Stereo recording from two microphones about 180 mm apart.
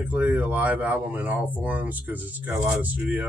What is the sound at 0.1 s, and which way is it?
Speech, 10° right (ahead or behind).